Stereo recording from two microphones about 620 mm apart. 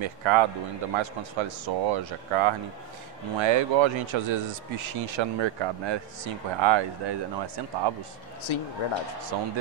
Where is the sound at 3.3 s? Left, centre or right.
Right.